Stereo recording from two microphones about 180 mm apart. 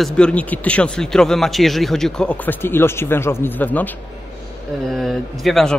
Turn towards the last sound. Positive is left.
turn(degrees=0)  # may be behind; listen again after turning